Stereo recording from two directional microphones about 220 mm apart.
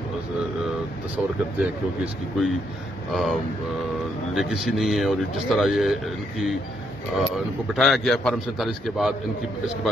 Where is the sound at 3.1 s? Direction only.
Centre (ahead or behind).